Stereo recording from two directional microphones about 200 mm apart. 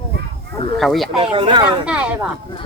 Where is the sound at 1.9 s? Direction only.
5° right (ahead or behind).